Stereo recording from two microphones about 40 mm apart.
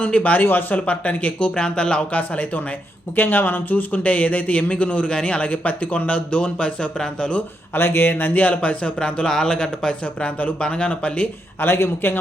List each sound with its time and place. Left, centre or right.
0.2 s speech: left
1.5 s speech: left
2.1 s speech: left
3.2 s speech: left
7.7 s a man's voice: left; by 9.9 s centre
10.0 s speech: left
10.6 s speech: left
11.6 s speech: left